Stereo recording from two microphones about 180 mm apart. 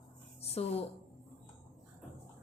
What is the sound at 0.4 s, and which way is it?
Speech, 35° left (ahead or behind).